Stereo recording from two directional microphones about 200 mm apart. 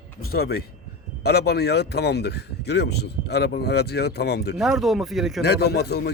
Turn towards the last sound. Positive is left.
turn(degrees=55)  # may be behind; listen again after turning